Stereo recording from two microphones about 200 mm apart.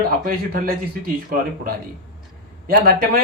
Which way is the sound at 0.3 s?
45° right (ahead or behind).